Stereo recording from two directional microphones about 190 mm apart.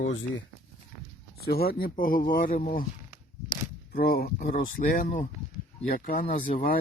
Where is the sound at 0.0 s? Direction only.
80° left.